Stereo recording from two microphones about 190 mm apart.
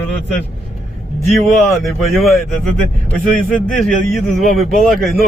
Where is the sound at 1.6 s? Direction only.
Centre (ahead or behind).